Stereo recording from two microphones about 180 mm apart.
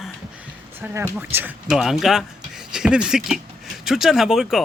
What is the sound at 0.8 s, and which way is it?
A woman's voice, 15° right (ahead or behind).